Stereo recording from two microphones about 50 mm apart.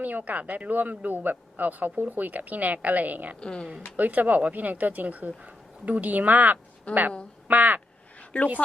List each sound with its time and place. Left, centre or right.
0.0 s speech: right
3.4 s speech: centre
3.9 s speech: right
6.9 s speech: left
7.4 s speech: right
8.3 s speech: left